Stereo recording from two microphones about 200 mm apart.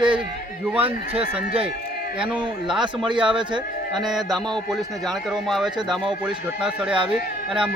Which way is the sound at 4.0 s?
Centre (ahead or behind).